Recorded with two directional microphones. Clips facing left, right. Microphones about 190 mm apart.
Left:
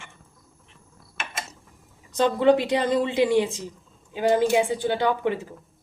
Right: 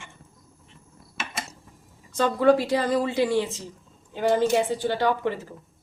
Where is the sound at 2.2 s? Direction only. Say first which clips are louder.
Left 1 dB; 20° left (ahead or behind).